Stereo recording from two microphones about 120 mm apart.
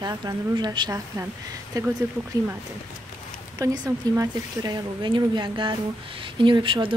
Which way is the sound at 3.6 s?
30° right (ahead or behind).